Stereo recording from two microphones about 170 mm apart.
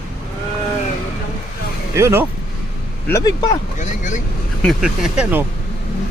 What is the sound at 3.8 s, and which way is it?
Speech, 45° left (ahead or behind).